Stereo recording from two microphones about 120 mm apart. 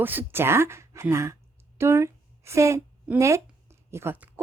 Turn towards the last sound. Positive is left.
turn(degrees=-20)  # may be behind; listen again after turning